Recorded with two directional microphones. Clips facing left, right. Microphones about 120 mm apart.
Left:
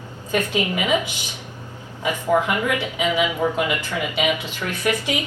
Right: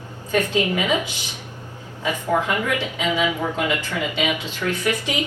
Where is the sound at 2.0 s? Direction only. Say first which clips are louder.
Left 2 dB; 15° left (ahead or behind).